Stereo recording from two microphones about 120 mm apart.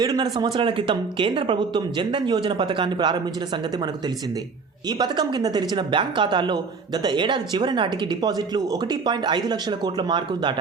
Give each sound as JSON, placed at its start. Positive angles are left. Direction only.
{"t": 0.0, "sound": "a woman's voice", "side_deg": -35}
{"t": 4.9, "sound": "a woman's voice", "side_deg": -35}